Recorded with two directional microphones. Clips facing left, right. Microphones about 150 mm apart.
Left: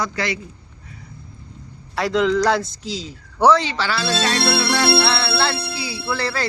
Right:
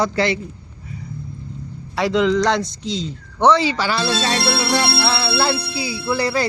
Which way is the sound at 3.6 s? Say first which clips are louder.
Right 3 dB; 15° right (ahead or behind).